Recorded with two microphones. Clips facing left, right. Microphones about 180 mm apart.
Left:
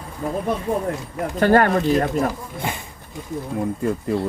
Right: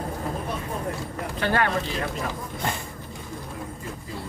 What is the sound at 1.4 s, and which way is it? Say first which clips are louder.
Speech: left 9 dB; 45° left (ahead or behind).